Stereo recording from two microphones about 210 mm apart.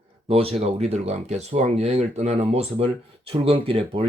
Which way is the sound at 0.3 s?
30° right (ahead or behind).